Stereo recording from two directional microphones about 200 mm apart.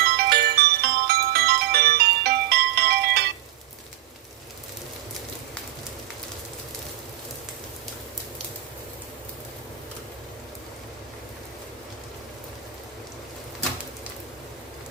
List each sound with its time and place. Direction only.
0.0 s music: 50° right (ahead or behind)